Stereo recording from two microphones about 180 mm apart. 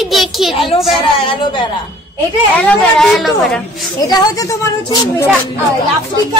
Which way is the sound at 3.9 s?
20° left (ahead or behind).